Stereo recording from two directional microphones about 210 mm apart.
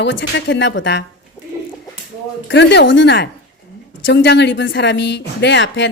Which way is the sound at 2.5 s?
55° left (ahead or behind).